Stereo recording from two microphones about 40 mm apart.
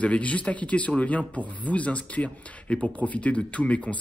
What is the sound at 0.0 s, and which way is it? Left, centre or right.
Speech, left.